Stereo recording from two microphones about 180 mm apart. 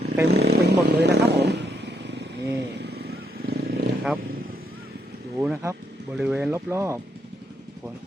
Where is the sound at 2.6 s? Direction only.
65° right (ahead or behind).